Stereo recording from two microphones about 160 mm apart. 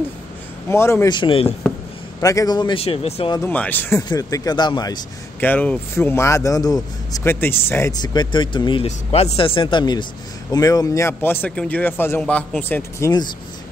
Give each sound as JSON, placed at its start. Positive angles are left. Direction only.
{"t": 0.7, "sound": "a man's voice", "side_deg": 15}
{"t": 1.1, "sound": "speech", "side_deg": 35}
{"t": 2.2, "sound": "speech", "side_deg": 25}
{"t": 3.3, "sound": "a man's voice", "side_deg": 10}
{"t": 4.1, "sound": "speech", "side_deg": 25}
{"t": 5.4, "sound": "a man's voice", "side_deg": 10}
{"t": 8.0, "sound": "speech", "side_deg": 25}
{"t": 8.8, "sound": "a man's voice", "side_deg": 40}